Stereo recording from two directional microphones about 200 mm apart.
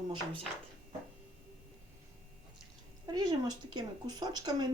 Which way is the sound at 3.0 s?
20° right (ahead or behind).